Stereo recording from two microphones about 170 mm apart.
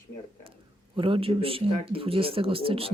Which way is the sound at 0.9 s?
30° right (ahead or behind).